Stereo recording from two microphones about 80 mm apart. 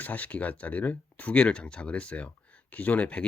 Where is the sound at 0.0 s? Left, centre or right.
Centre.